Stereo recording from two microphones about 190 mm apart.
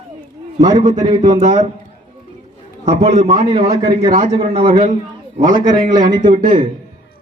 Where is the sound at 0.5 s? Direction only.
25° right (ahead or behind).